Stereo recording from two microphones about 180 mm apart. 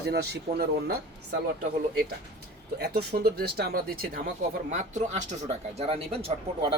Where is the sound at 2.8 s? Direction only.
60° right (ahead or behind).